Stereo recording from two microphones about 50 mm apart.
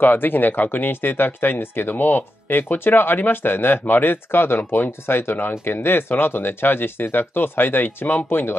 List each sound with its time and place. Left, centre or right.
0.0 s speech: left